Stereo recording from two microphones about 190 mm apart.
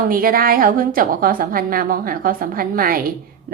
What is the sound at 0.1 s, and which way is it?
A woman's voice, 50° right (ahead or behind).